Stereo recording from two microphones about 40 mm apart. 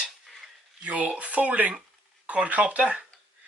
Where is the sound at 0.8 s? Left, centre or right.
Right.